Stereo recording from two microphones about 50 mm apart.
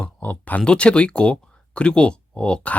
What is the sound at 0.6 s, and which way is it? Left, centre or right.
Speech, left.